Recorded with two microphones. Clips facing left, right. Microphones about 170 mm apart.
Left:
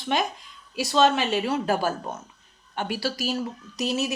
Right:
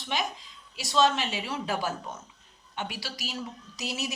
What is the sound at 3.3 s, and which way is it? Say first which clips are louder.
Speech: left 8 dB; 60° left (ahead or behind).